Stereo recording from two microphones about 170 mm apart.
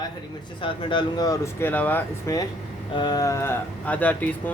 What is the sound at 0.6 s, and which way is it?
Speech, 30° left (ahead or behind).